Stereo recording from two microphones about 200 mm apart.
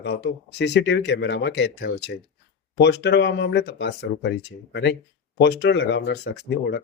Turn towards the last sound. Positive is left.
turn(degrees=55)  # may be behind; listen again after turning